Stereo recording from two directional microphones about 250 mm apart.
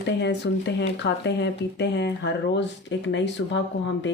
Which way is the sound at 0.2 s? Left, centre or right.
Left.